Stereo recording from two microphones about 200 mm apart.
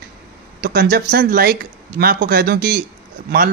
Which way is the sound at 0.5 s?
50° right (ahead or behind).